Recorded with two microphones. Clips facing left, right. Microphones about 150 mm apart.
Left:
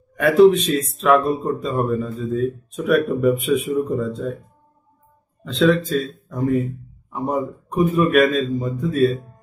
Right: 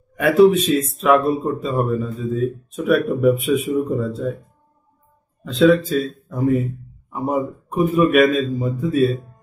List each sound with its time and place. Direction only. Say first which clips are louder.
0.1 s speech: even; 5° right (ahead or behind)
5.4 s speech: right 3 dB; centre (ahead or behind)